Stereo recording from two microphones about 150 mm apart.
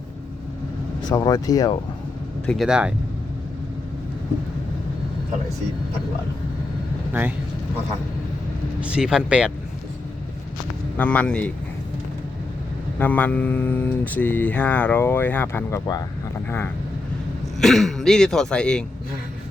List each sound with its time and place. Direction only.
1.1 s speech: 25° left (ahead or behind)
2.5 s speech: centre (ahead or behind)
7.1 s speech: 10° right (ahead or behind)
8.8 s speech: 5° right (ahead or behind)
10.9 s speech: 10° left (ahead or behind)
13.0 s speech: 10° left (ahead or behind)
17.6 s speech: centre (ahead or behind)